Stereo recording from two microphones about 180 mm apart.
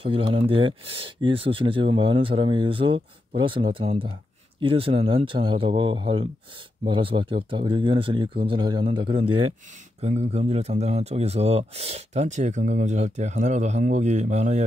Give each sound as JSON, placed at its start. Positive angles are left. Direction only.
{"t": 0.0, "sound": "speech", "side_deg": -30}